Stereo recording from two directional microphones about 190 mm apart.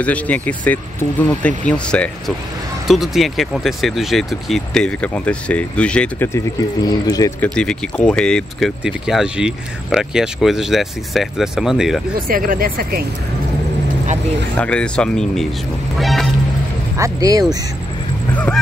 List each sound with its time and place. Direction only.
0.0 s speech: 5° left (ahead or behind)
7.4 s speech: 5° left (ahead or behind)
12.3 s speech: 50° right (ahead or behind)
14.6 s speech: 5° left (ahead or behind)
16.0 s music: centre (ahead or behind)
16.9 s speech: 15° right (ahead or behind)
18.3 s speech: 5° left (ahead or behind)